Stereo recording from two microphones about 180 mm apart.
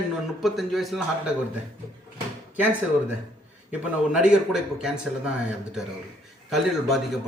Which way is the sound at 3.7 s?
5° right (ahead or behind).